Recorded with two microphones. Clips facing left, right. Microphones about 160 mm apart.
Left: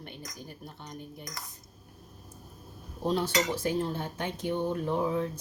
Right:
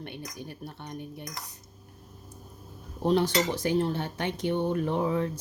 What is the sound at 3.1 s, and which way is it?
Cutlery, 70° right (ahead or behind).